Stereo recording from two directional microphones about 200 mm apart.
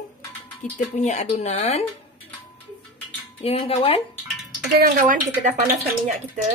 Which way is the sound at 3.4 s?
30° left (ahead or behind).